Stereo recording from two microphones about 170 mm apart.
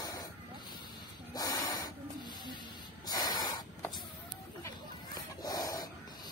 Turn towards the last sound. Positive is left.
turn(degrees=20)  # may be behind; listen again after turning